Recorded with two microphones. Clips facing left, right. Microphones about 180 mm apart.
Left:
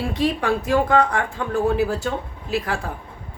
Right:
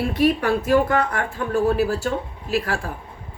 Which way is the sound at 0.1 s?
15° left (ahead or behind).